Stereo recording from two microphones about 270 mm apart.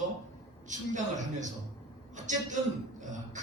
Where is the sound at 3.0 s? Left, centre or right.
Right.